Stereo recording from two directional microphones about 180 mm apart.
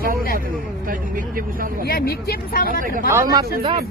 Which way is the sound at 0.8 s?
50° right (ahead or behind).